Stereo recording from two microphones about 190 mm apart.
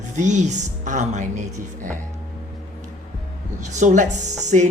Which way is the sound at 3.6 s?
40° right (ahead or behind).